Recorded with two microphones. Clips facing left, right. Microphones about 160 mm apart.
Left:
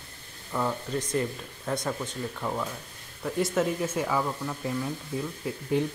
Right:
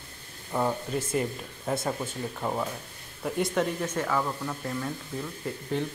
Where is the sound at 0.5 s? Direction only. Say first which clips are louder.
Right 1 dB; 15° right (ahead or behind).